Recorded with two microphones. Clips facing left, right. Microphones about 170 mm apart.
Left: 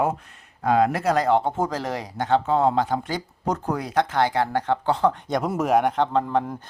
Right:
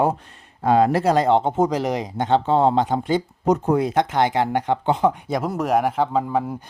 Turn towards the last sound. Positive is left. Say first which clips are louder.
# right 1 dB
turn(degrees=-5)  # may be behind; listen again after turning